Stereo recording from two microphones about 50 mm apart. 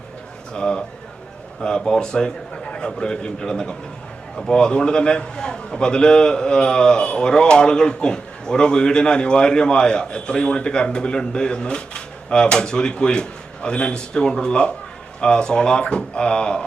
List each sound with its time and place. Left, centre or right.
0.5 s a man's voice: centre